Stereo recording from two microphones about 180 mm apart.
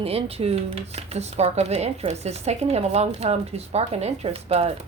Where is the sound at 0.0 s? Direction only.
35° right (ahead or behind).